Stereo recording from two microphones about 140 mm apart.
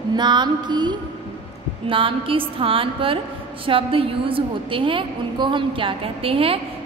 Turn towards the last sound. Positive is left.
turn(degrees=-40)  # may be behind; listen again after turning